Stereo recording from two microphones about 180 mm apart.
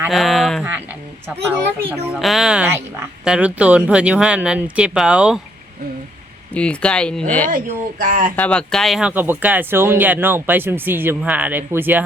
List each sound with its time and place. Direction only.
0.1 s speech: centre (ahead or behind)
2.1 s speech: centre (ahead or behind)
6.5 s speech: 5° left (ahead or behind)
7.5 s speech: 50° right (ahead or behind)
8.4 s speech: 5° left (ahead or behind); by 12.0 s 10° right (ahead or behind)